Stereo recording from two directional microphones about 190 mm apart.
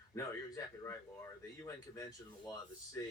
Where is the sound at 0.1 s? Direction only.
15° left (ahead or behind).